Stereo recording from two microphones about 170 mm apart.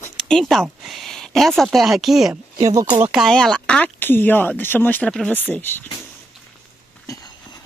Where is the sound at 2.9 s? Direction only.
5° right (ahead or behind); by 5.9 s 10° left (ahead or behind).